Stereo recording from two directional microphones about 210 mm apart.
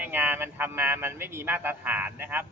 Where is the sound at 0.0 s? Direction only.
10° right (ahead or behind).